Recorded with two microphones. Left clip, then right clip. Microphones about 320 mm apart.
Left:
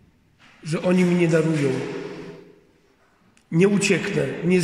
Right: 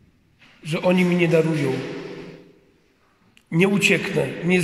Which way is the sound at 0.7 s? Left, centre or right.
Centre.